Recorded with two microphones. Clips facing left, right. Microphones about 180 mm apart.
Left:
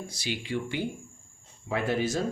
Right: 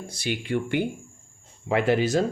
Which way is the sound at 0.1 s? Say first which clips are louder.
Right 7 dB; 55° right (ahead or behind).